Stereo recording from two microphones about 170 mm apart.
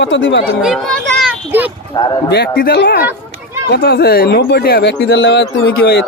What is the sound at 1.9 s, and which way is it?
Speech, 25° left (ahead or behind).